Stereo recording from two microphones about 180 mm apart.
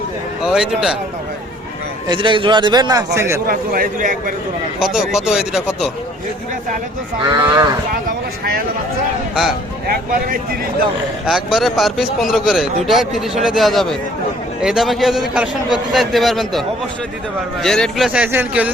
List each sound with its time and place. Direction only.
0.4 s a man's voice: 5° right (ahead or behind)
2.0 s a man's voice: 25° right (ahead or behind)
3.4 s a man's voice: 55° right (ahead or behind)
4.8 s a man's voice: 5° right (ahead or behind)
7.2 s a man's voice: 25° right (ahead or behind)
11.3 s a man's voice: centre (ahead or behind)